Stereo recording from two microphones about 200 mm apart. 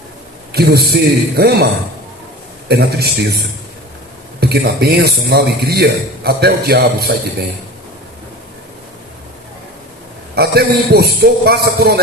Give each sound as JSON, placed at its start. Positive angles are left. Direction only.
{"t": 0.5, "sound": "a man's voice", "side_deg": -50}
{"t": 2.6, "sound": "a man's voice", "side_deg": -50}
{"t": 4.4, "sound": "a man's voice", "side_deg": -55}
{"t": 10.3, "sound": "a man's voice", "side_deg": -55}